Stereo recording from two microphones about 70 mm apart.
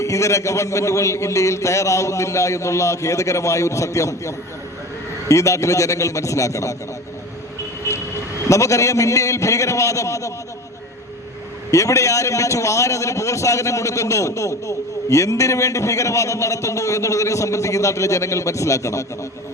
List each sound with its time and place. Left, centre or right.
0.0 s a man's voice: left
8.4 s a man's voice: left
11.7 s a man's voice: left